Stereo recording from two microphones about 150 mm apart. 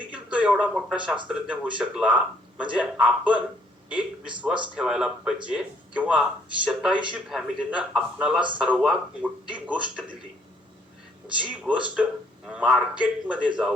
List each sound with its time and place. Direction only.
0.1 s speech: 5° right (ahead or behind)
11.3 s speech: 5° right (ahead or behind)